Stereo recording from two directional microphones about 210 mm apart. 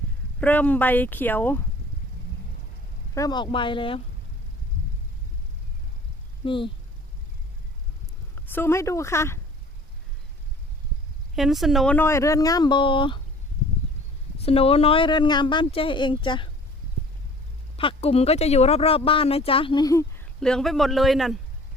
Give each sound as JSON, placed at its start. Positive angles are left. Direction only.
{"t": 0.3, "sound": "speech", "side_deg": 5}
{"t": 3.2, "sound": "speech", "side_deg": 20}
{"t": 6.4, "sound": "speech", "side_deg": 25}
{"t": 8.5, "sound": "speech", "side_deg": 10}
{"t": 11.3, "sound": "speech", "side_deg": 0}
{"t": 14.4, "sound": "speech", "side_deg": 25}
{"t": 17.7, "sound": "speech", "side_deg": 25}
{"t": 20.4, "sound": "a man's voice", "side_deg": 0}